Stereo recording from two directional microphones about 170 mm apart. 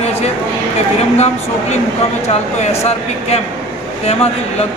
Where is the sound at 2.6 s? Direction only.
40° left (ahead or behind).